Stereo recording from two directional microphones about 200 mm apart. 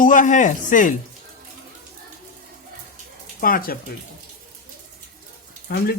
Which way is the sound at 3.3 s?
45° left (ahead or behind).